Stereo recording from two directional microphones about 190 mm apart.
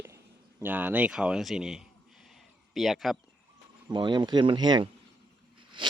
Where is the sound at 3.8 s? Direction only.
25° right (ahead or behind).